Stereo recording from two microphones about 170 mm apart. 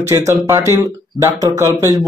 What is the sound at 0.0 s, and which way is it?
A man's voice, 15° right (ahead or behind).